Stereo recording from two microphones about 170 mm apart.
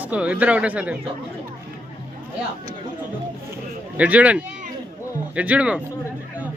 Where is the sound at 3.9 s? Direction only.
10° right (ahead or behind).